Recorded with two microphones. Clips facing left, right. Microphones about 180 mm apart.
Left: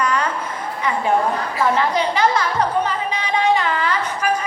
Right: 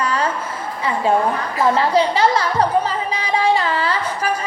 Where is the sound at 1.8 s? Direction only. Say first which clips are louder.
Right 3 dB; 30° right (ahead or behind).